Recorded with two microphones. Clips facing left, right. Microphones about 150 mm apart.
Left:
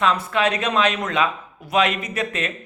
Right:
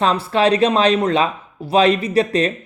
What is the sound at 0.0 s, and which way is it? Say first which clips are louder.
Speech: right 4 dB; 30° right (ahead or behind).